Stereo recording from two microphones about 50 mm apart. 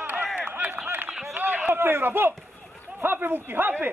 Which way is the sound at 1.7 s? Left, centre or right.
Right.